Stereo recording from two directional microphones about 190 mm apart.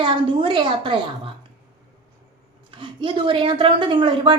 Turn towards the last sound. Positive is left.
turn(degrees=-25)  # may be behind; listen again after turning